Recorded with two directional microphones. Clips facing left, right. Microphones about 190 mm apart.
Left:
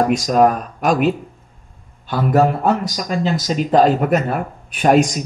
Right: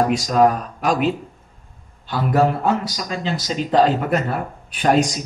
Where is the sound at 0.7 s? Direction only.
50° left (ahead or behind).